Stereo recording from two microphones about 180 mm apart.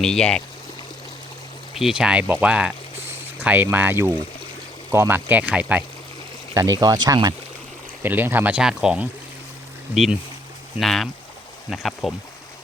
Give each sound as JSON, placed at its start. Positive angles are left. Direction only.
{"t": 0.0, "sound": "speech", "side_deg": 5}
{"t": 1.7, "sound": "speech", "side_deg": 0}
{"t": 6.5, "sound": "speech", "side_deg": -20}
{"t": 8.0, "sound": "speech", "side_deg": -10}